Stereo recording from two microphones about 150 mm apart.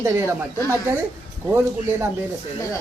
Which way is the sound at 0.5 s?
20° left (ahead or behind).